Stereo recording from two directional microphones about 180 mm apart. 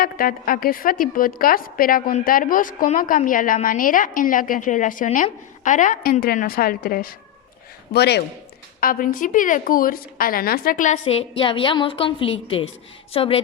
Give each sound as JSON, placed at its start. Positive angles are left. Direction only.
{"t": 0.0, "sound": "a woman's voice", "side_deg": 55}
{"t": 7.9, "sound": "speech", "side_deg": 65}
{"t": 8.8, "sound": "a woman's voice", "side_deg": 50}
{"t": 11.0, "sound": "a woman's voice", "side_deg": 30}